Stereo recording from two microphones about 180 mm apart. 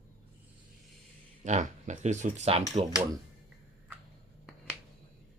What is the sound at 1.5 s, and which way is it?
Speech, 40° right (ahead or behind).